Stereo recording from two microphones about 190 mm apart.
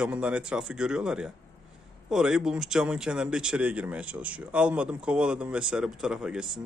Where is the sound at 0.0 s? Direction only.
5° right (ahead or behind).